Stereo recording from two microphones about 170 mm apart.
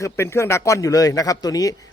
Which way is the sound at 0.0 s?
15° left (ahead or behind).